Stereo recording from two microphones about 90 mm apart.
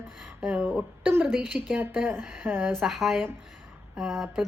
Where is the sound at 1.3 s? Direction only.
5° right (ahead or behind).